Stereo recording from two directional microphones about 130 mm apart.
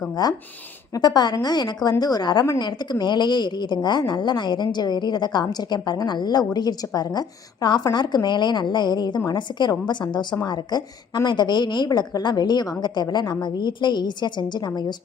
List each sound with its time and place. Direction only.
0.9 s a woman's voice: 30° left (ahead or behind)